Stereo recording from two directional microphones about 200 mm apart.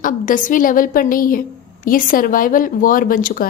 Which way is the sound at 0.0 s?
40° left (ahead or behind).